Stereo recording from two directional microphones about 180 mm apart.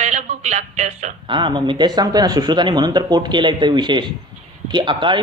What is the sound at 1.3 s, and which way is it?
Speech, 25° right (ahead or behind).